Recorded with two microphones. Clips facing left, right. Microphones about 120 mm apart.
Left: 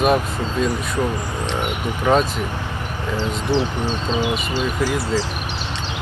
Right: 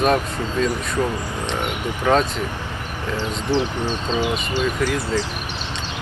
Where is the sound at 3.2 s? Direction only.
15° right (ahead or behind).